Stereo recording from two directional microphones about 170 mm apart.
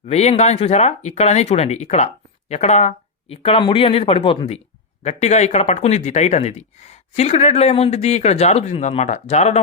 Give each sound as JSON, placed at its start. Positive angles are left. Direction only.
{"t": 0.0, "sound": "speech", "side_deg": 40}